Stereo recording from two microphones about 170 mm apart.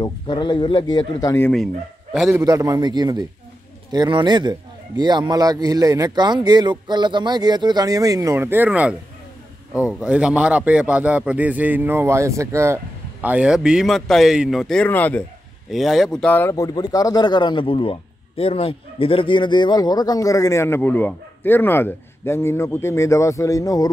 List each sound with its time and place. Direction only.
0.0 s speech: 25° left (ahead or behind)
2.3 s a man's voice: 20° right (ahead or behind); by 23.9 s 20° left (ahead or behind)